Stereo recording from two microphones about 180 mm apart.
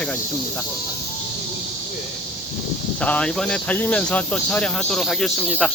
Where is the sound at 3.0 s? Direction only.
5° left (ahead or behind).